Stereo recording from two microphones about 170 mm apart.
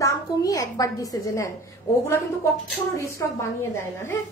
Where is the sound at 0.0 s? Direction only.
20° left (ahead or behind).